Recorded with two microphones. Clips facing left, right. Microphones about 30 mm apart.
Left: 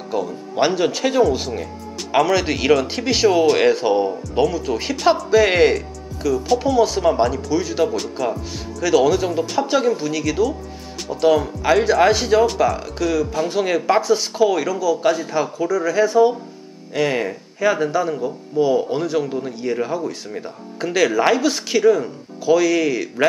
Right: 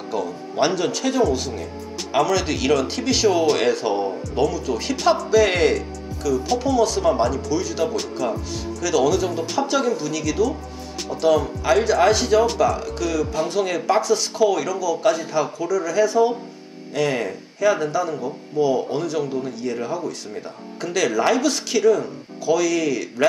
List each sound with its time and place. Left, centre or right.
0.1 s speech: centre
7.9 s speech: centre
8.8 s speech: centre